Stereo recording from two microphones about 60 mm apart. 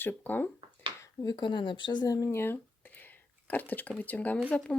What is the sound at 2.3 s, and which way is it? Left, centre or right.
Speech, left.